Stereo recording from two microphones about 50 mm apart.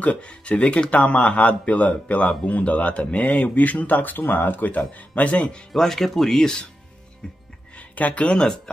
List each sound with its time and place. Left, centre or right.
0.0 s speech: left
5.7 s speech: centre
7.9 s speech: left